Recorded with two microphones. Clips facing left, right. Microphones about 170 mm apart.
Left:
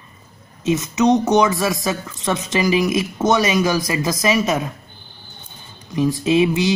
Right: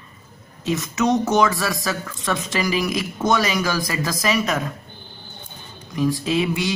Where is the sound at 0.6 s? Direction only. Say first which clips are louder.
Left 4 dB; 20° left (ahead or behind).